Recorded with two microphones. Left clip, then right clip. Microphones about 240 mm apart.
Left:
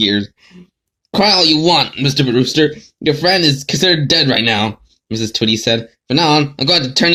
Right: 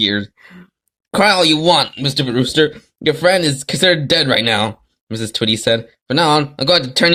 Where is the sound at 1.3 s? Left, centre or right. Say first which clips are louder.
Left 3 dB; right.